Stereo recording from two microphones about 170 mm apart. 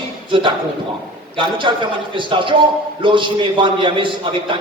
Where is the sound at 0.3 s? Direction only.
30° right (ahead or behind).